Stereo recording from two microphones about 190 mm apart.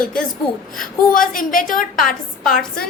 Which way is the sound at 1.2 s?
45° left (ahead or behind).